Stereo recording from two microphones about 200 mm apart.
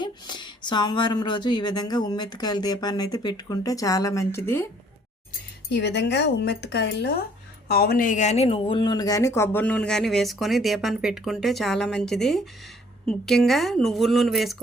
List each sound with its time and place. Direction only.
0.0 s speech: 20° left (ahead or behind)
5.7 s speech: 60° left (ahead or behind); by 14.5 s centre (ahead or behind)